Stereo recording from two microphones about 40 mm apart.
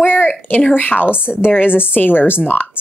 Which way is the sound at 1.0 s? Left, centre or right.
Right.